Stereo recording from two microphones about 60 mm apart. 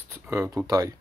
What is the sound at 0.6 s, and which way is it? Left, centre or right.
Speech, right.